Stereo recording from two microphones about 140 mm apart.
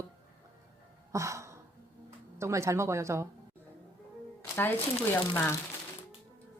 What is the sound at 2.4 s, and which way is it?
Speech, 20° right (ahead or behind).